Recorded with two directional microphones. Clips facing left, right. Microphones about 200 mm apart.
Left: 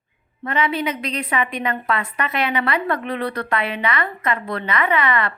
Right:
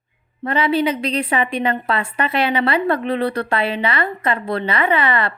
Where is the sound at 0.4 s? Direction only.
30° right (ahead or behind).